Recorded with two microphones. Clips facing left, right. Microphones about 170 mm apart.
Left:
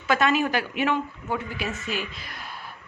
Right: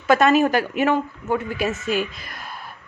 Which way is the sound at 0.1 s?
45° right (ahead or behind).